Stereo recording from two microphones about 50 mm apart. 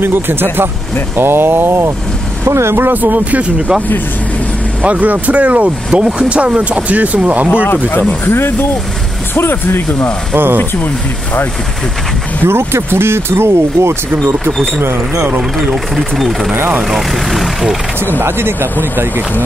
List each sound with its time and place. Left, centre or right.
0.0 s speech: right
2.9 s speech: right
4.8 s speech: right
7.6 s speech: left
8.3 s speech: left
10.3 s speech: right
12.4 s speech: right
15.7 s speech: centre
18.2 s speech: right